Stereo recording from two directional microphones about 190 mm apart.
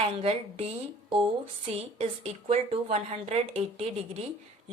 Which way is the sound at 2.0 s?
35° right (ahead or behind).